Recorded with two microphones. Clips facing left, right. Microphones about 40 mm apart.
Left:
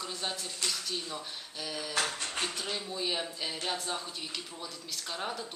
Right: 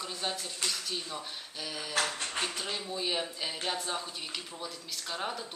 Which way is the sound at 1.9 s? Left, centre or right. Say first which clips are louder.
Right 2 dB; right.